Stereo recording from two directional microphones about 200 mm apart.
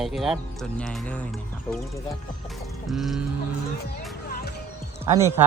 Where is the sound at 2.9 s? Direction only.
Centre (ahead or behind).